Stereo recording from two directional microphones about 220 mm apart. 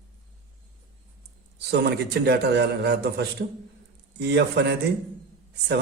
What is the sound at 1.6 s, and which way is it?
Speech, 50° right (ahead or behind).